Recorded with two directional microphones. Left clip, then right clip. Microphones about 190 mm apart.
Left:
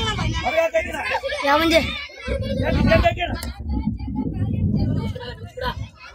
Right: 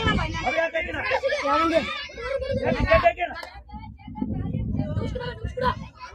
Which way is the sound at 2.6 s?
50° left (ahead or behind).